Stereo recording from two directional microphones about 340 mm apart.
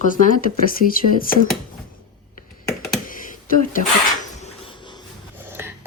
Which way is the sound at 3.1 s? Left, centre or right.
Left.